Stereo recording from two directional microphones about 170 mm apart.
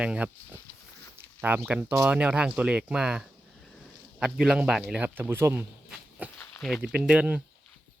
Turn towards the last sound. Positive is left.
turn(degrees=-5)  # may be behind; listen again after turning